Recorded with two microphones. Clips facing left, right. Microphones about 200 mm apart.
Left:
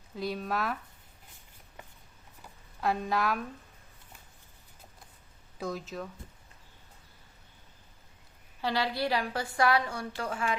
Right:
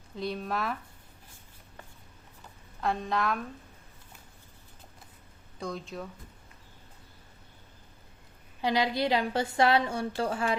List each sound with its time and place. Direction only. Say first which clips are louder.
0.2 s speech: even; centre (ahead or behind)
2.4 s a sound: even; 5° left (ahead or behind)
5.5 s speech: left 1 dB; 5° left (ahead or behind)
8.6 s a woman's voice: right 3 dB; 15° right (ahead or behind)